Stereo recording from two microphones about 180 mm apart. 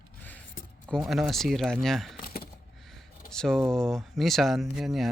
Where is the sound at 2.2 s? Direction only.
60° left (ahead or behind).